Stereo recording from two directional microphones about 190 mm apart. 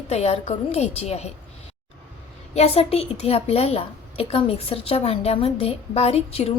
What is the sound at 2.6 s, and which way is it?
A woman's voice, 30° left (ahead or behind).